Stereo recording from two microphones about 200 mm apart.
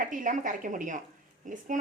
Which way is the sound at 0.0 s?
40° right (ahead or behind).